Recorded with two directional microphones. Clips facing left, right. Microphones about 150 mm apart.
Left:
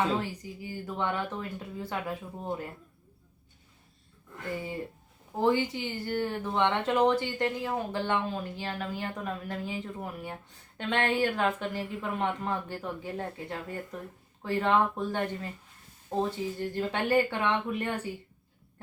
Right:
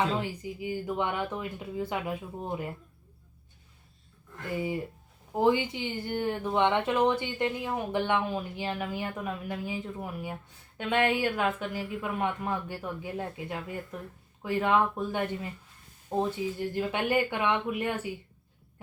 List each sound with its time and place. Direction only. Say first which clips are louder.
0.2 s speech: right 2 dB; 15° right (ahead or behind)
4.5 s speech: right 5 dB; 15° right (ahead or behind)